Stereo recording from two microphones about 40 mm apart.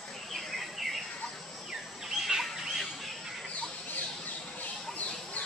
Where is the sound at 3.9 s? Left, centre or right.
Left.